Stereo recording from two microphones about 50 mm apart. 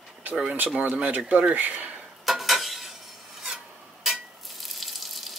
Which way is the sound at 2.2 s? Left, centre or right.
Centre.